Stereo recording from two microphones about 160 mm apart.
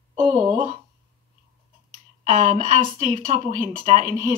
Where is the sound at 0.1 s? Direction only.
45° right (ahead or behind).